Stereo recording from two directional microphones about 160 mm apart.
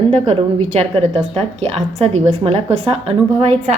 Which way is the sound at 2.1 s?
40° right (ahead or behind).